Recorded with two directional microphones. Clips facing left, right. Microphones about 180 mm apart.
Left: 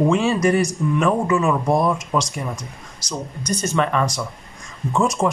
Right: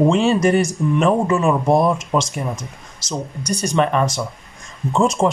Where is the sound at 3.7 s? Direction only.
25° right (ahead or behind).